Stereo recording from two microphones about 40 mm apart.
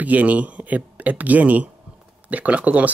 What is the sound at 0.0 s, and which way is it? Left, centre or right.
Speech, right.